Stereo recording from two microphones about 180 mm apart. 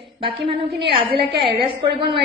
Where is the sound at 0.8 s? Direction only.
30° right (ahead or behind).